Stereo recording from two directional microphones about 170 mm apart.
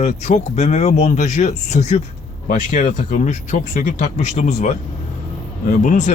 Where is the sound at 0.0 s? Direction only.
40° left (ahead or behind).